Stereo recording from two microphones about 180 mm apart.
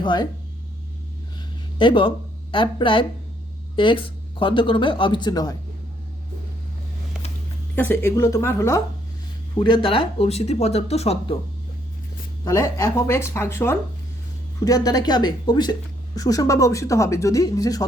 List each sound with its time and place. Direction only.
0.0 s speech: 25° left (ahead or behind)
1.8 s speech: 30° left (ahead or behind)
7.8 s speech: 10° left (ahead or behind)
9.6 s speech: 25° left (ahead or behind)
12.5 s speech: 15° left (ahead or behind)